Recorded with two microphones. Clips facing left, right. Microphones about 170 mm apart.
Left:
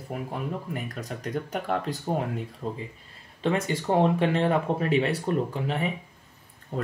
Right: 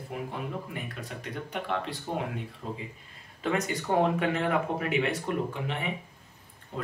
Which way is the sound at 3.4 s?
30° left (ahead or behind).